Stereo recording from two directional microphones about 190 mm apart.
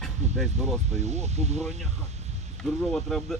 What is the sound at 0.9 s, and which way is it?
Speech, 35° right (ahead or behind).